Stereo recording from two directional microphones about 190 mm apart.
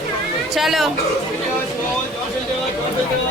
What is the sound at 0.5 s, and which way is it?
Speech, centre (ahead or behind).